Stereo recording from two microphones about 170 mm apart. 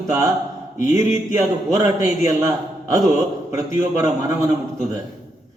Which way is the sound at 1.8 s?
20° right (ahead or behind).